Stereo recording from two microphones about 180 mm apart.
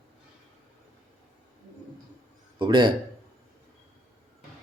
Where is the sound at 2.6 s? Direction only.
25° right (ahead or behind).